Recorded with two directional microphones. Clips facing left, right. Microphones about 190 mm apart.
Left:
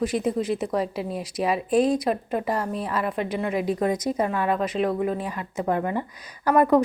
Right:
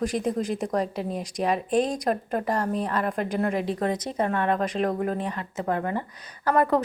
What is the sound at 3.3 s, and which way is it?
Speech, 40° right (ahead or behind).